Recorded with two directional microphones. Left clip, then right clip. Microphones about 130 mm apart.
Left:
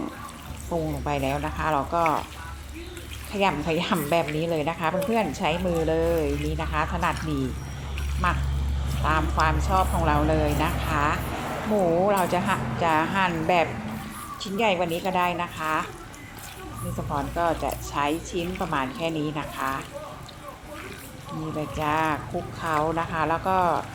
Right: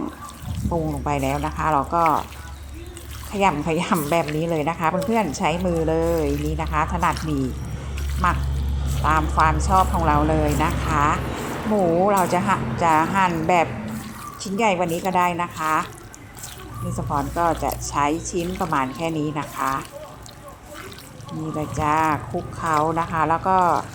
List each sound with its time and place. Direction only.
0.7 s speech: 45° right (ahead or behind)
3.3 s a woman's voice: 40° right (ahead or behind)
8.2 s a woman's voice: 45° right (ahead or behind)
17.1 s a woman's voice: 40° right (ahead or behind)
21.8 s a woman's voice: 40° right (ahead or behind)